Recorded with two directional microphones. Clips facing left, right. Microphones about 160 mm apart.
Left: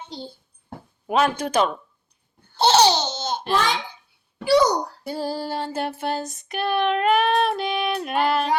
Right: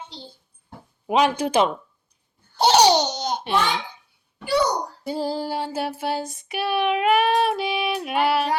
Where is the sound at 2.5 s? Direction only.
15° right (ahead or behind).